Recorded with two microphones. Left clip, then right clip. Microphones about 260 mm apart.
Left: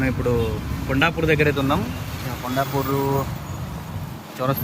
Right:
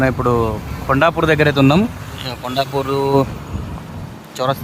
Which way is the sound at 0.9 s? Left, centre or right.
Centre.